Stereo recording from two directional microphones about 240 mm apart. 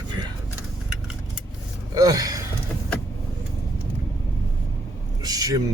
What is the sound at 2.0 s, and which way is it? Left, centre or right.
Speech, centre.